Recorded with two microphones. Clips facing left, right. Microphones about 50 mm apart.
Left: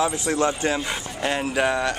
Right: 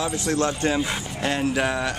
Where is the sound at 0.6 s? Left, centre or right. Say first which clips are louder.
Right 1 dB; centre.